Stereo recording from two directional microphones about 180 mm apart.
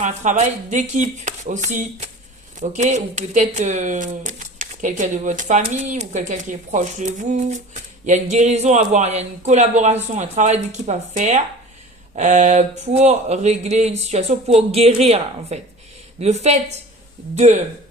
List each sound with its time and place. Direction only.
0.0 s speech: 40° right (ahead or behind)